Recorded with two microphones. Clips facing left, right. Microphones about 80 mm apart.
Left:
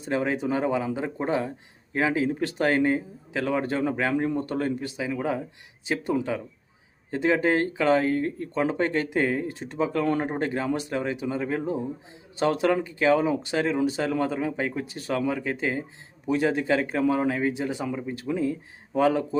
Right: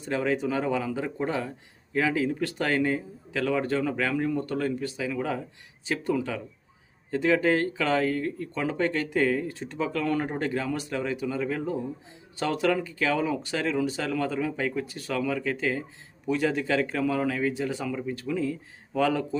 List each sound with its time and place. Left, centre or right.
0.0 s speech: left